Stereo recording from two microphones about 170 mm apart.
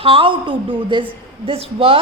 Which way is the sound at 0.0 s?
35° right (ahead or behind).